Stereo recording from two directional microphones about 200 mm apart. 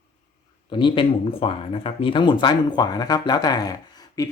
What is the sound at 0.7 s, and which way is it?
Speech, 25° left (ahead or behind).